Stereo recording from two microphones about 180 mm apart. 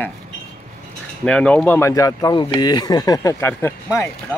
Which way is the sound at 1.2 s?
5° left (ahead or behind).